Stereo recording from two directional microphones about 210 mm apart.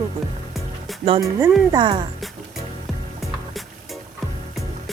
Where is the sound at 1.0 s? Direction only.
20° right (ahead or behind).